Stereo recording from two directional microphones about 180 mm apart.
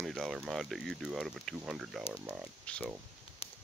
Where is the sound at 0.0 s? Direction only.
Centre (ahead or behind).